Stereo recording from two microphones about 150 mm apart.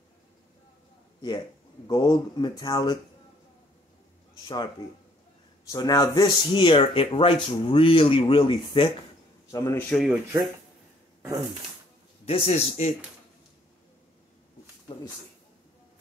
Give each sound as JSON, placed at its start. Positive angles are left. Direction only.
{"t": 1.9, "sound": "speech", "side_deg": 30}
{"t": 5.7, "sound": "speech", "side_deg": 25}
{"t": 6.5, "sound": "speech", "side_deg": 35}
{"t": 9.5, "sound": "speech", "side_deg": 20}
{"t": 9.8, "sound": "speech", "side_deg": 0}
{"t": 12.3, "sound": "a man's voice", "side_deg": 45}